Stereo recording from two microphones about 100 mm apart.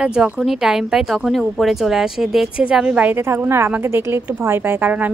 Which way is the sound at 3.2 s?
25° right (ahead or behind).